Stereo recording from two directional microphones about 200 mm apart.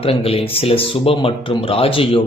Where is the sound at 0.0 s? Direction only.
30° left (ahead or behind).